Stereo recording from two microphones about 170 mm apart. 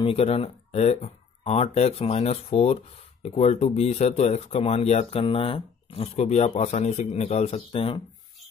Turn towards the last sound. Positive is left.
turn(degrees=35)  # may be behind; listen again after turning